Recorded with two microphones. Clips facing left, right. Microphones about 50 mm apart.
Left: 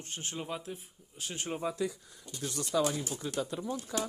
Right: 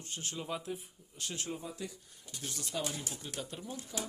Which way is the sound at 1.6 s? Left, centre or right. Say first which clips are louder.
Left 10 dB; left.